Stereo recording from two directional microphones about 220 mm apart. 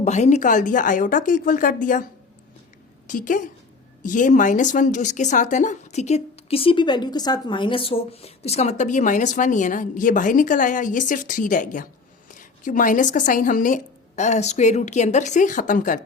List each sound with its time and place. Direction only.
0.0 s a woman's voice: 30° left (ahead or behind)
3.1 s a woman's voice: 35° left (ahead or behind)